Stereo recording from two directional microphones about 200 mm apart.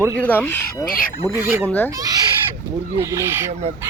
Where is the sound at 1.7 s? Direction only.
10° left (ahead or behind).